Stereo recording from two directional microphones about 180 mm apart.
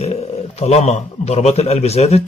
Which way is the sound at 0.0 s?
35° left (ahead or behind).